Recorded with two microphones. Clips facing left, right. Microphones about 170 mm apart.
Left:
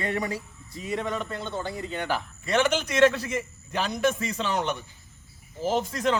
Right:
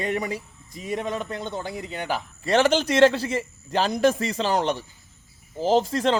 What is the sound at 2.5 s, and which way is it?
Speech, 30° right (ahead or behind).